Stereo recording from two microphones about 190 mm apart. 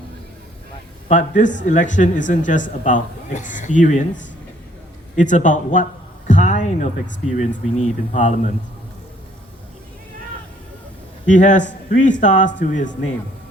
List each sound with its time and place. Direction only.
1.0 s speech: 40° left (ahead or behind)
5.1 s speech: 40° left (ahead or behind)
11.3 s speech: 40° left (ahead or behind)